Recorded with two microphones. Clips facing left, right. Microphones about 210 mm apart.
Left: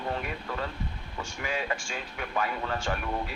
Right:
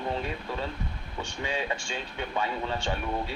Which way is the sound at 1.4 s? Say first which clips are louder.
Even; 30° right (ahead or behind).